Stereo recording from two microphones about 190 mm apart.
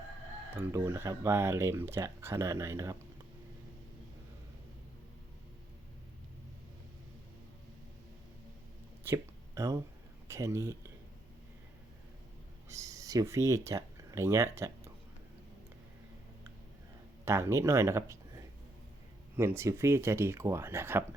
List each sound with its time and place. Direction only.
0.5 s speech: 15° right (ahead or behind)
9.0 s a sound: 15° right (ahead or behind)
10.2 s speech: 15° right (ahead or behind)
12.6 s speech: 15° right (ahead or behind)
17.2 s speech: 15° right (ahead or behind)